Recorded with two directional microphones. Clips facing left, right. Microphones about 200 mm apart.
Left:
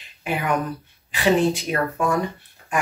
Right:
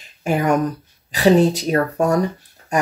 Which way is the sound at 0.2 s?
45° right (ahead or behind).